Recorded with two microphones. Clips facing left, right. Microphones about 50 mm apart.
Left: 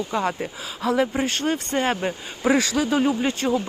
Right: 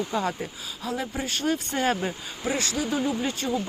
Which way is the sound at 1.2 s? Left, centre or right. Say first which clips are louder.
Left 6 dB; left.